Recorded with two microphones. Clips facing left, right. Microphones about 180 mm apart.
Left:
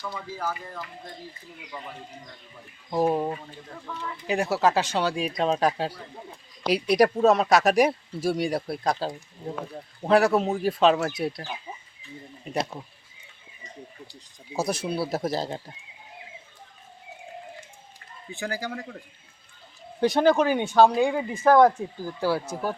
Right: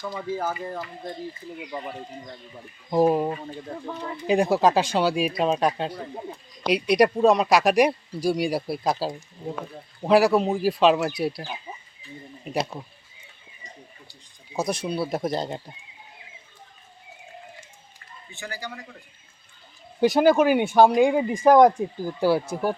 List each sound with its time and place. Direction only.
0.0 s speech: 30° right (ahead or behind)
2.9 s speech: 10° right (ahead or behind)
3.7 s speech: 35° right (ahead or behind)
4.3 s speech: 15° right (ahead or behind)
5.4 s speech: centre (ahead or behind)
14.5 s speech: 5° left (ahead or behind)
20.0 s speech: 5° right (ahead or behind)